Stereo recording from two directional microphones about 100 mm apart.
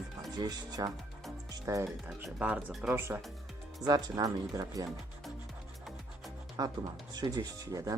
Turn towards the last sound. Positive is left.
turn(degrees=-35)  # may be behind; listen again after turning